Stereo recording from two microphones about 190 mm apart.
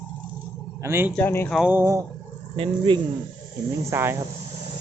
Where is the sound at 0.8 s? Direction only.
10° right (ahead or behind).